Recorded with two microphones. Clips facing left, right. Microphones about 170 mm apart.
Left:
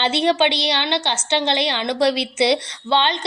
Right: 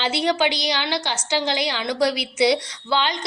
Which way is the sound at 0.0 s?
25° left (ahead or behind).